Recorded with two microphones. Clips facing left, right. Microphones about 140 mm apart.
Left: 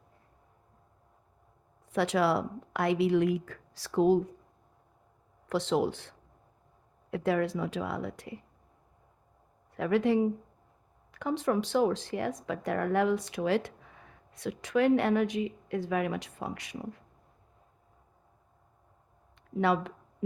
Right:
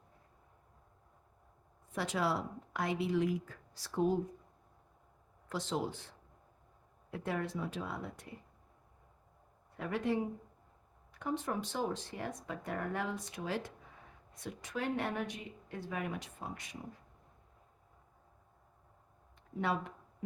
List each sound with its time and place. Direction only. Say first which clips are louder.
1.9 s a woman's voice: left 8 dB; 75° left (ahead or behind)
5.5 s a woman's voice: left 9 dB; 75° left (ahead or behind)
7.1 s speech: left 9 dB; 90° left
9.7 s speech: left 9 dB; 90° left
19.5 s speech: left 8 dB; 90° left